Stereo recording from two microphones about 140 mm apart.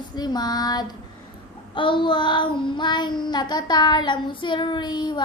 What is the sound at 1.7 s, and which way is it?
Child singing, 35° left (ahead or behind).